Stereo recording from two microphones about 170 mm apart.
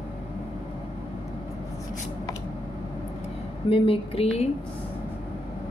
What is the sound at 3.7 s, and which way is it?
Speech, 30° left (ahead or behind).